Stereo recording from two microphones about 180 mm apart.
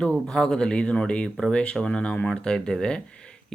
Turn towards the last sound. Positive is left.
turn(degrees=5)  # may be behind; listen again after turning